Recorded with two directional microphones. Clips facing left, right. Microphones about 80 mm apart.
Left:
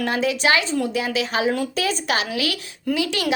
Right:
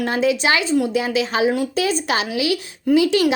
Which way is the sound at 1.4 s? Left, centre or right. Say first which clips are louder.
Right 3 dB; centre.